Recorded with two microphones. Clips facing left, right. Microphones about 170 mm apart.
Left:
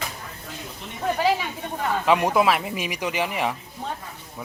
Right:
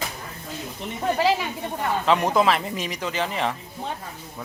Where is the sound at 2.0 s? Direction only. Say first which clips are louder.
Even; 10° left (ahead or behind).